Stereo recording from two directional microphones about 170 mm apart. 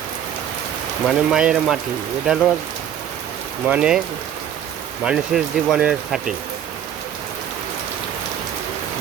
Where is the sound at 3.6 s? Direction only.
5° right (ahead or behind).